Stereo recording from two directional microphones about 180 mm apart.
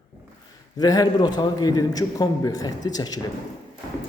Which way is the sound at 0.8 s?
20° left (ahead or behind).